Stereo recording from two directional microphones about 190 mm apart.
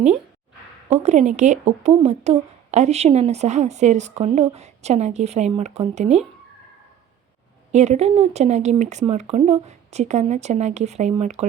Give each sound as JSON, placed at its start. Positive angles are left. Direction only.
{"t": 0.9, "sound": "a woman's voice", "side_deg": -35}
{"t": 7.7, "sound": "a woman's voice", "side_deg": -35}